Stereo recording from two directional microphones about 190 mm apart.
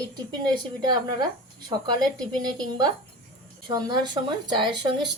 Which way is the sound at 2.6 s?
25° right (ahead or behind).